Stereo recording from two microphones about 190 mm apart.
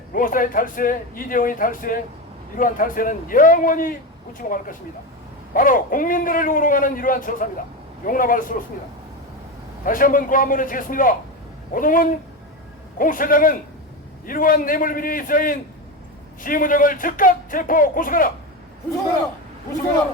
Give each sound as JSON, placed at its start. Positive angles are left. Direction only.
{"t": 0.1, "sound": "speech", "side_deg": 45}
{"t": 5.5, "sound": "speech", "side_deg": 45}
{"t": 9.8, "sound": "speech", "side_deg": 45}